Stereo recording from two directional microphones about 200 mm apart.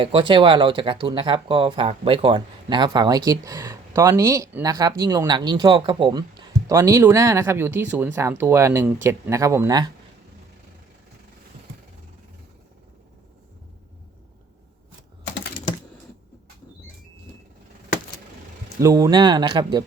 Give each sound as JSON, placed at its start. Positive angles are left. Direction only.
{"t": 0.0, "sound": "speech", "side_deg": -25}
{"t": 18.8, "sound": "speech", "side_deg": -15}